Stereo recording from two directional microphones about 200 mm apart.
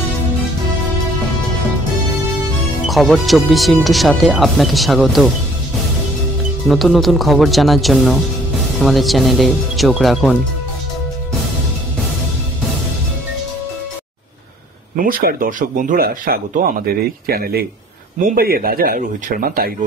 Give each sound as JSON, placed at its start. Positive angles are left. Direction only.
{"t": 2.9, "sound": "speech", "side_deg": 0}
{"t": 6.7, "sound": "speech", "side_deg": 0}
{"t": 15.0, "sound": "speech", "side_deg": -45}